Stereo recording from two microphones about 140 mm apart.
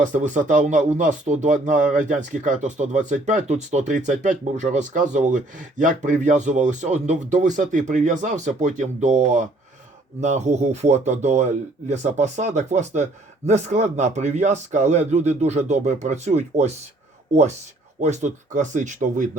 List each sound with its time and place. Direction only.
0.0 s speech: 65° right (ahead or behind)
18.0 s speech: 55° right (ahead or behind)